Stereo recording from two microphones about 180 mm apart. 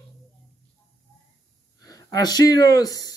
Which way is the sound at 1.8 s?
20° left (ahead or behind).